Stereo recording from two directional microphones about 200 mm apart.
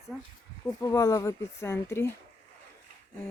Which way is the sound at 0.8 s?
15° left (ahead or behind).